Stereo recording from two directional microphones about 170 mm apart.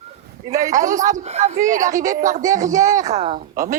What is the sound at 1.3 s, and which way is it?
Speech, 45° right (ahead or behind).